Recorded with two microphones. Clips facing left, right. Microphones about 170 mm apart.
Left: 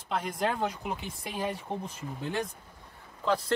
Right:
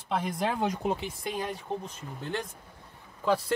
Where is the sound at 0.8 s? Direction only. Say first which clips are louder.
Right 6 dB; 35° right (ahead or behind).